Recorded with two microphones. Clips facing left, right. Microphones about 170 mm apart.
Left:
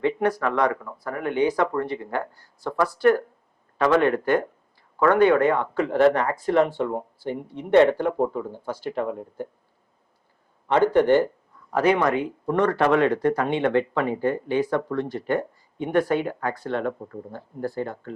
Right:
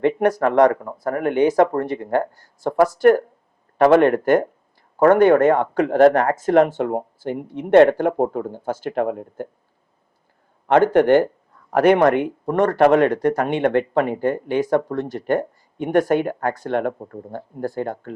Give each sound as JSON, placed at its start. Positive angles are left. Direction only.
{"t": 0.0, "sound": "speech", "side_deg": -45}
{"t": 7.3, "sound": "speech", "side_deg": -5}
{"t": 7.7, "sound": "speech", "side_deg": -50}
{"t": 10.7, "sound": "speech", "side_deg": -50}
{"t": 12.5, "sound": "speech", "side_deg": -45}